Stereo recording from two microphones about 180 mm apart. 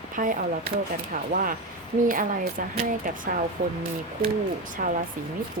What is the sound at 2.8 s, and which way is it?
Speech, 50° right (ahead or behind).